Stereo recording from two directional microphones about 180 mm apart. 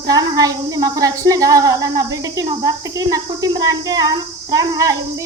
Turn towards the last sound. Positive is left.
turn(degrees=-20)  # may be behind; listen again after turning